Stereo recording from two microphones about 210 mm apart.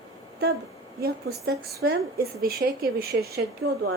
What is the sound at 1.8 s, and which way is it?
A woman's voice, 45° right (ahead or behind).